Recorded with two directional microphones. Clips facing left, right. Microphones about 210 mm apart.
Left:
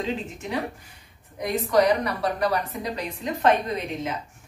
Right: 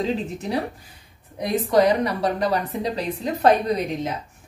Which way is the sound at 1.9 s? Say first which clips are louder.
Right 3 dB; 25° right (ahead or behind).